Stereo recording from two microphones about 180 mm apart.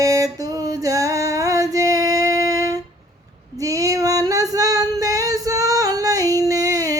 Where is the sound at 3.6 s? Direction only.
20° right (ahead or behind).